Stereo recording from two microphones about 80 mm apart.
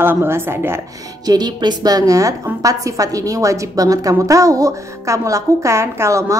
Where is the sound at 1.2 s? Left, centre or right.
Right.